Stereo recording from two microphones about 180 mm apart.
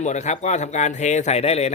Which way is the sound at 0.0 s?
40° left (ahead or behind).